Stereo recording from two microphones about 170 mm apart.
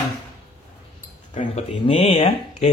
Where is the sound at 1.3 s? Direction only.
30° left (ahead or behind).